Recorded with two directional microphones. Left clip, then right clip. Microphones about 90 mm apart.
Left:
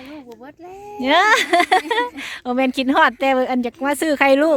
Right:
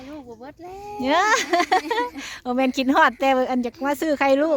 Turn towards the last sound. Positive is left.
turn(degrees=35)  # may be behind; listen again after turning